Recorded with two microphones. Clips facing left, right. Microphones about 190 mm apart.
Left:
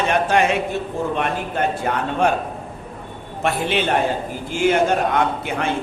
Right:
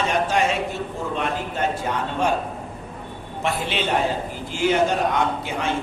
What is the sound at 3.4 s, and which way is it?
A man's voice, 55° left (ahead or behind).